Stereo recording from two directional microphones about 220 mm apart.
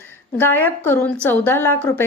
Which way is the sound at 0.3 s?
10° left (ahead or behind).